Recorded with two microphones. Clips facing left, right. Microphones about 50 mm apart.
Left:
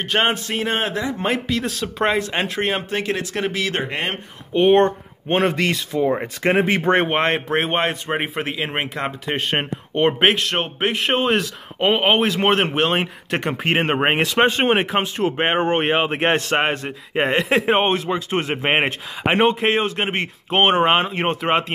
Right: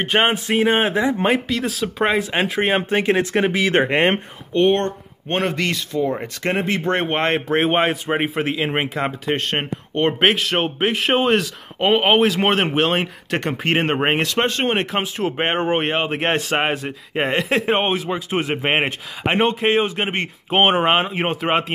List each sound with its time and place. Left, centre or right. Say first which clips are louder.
0.0 s speech: right 2 dB; centre
1.2 s speech: right 2 dB; centre; by 4.2 s right
4.6 s speech: left 3 dB; centre
7.1 s a man's voice: even; centre
10.2 s a man's voice: right 1 dB; centre